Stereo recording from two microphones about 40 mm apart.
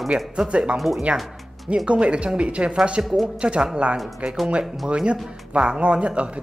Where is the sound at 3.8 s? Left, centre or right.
Right.